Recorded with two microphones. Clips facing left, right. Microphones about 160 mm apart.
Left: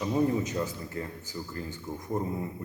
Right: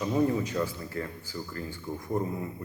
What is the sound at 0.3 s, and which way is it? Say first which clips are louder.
A man's voice: right 1 dB; 20° left (ahead or behind).